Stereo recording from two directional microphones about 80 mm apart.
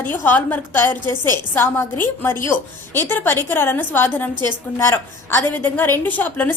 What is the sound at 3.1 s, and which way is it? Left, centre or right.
A woman's voice, left.